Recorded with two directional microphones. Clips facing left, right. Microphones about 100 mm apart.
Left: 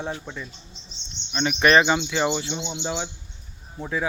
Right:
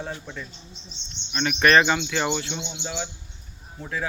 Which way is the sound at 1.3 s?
20° left (ahead or behind).